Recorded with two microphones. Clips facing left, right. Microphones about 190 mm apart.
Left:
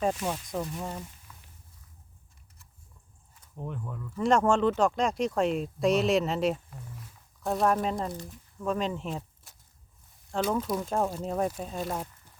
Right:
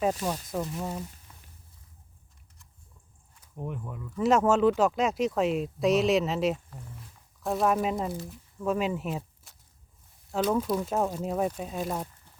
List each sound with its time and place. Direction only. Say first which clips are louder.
0.5 s speech: right 2 dB; centre (ahead or behind)
1.3 s a sound: left 1 dB; 35° right (ahead or behind)
3.5 s speech: right 1 dB; 10° right (ahead or behind)